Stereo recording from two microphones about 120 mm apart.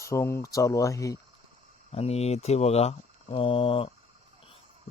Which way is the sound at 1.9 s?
60° left (ahead or behind).